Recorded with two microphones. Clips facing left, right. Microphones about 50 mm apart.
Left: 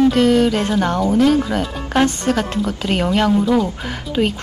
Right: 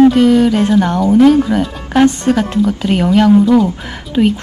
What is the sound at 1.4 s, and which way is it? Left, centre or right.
A woman's voice, centre.